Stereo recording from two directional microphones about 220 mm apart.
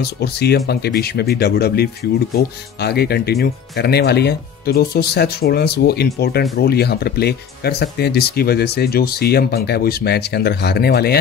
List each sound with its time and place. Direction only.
0.0 s speech: 45° left (ahead or behind)